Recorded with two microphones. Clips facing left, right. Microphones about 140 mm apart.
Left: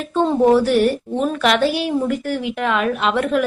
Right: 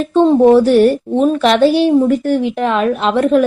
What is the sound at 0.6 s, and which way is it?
A woman's voice, 30° right (ahead or behind).